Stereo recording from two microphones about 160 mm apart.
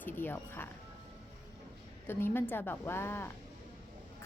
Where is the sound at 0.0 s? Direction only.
10° left (ahead or behind).